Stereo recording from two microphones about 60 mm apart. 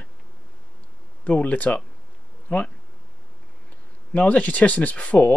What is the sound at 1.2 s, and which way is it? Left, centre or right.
Speech, left.